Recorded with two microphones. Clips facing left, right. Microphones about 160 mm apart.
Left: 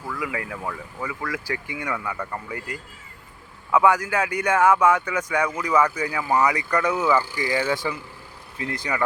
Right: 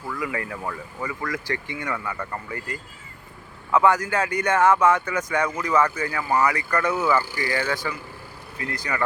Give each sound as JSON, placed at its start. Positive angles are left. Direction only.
{"t": 0.1, "sound": "speech", "side_deg": 5}